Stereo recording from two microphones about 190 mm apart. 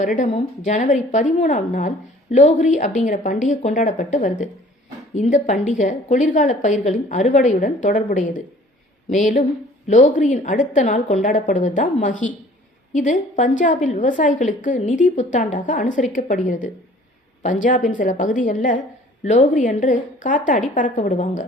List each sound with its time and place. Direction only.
0.0 s a woman's voice: 40° left (ahead or behind)